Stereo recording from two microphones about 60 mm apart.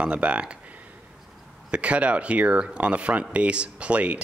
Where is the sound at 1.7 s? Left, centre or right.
Right.